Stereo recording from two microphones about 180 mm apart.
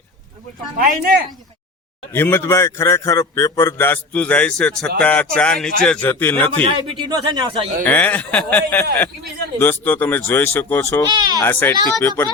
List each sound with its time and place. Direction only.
0.8 s speech: 55° right (ahead or behind)
2.1 s a man's voice: 10° left (ahead or behind)
6.9 s speech: 25° right (ahead or behind)
7.9 s a man's voice: 10° left (ahead or behind)
11.1 s speech: 25° right (ahead or behind)
11.4 s a man's voice: 10° left (ahead or behind)